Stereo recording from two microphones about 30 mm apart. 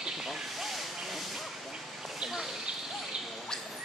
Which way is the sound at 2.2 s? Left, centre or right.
Centre.